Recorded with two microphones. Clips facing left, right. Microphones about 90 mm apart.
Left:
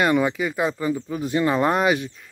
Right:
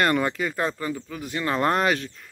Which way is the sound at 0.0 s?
10° left (ahead or behind).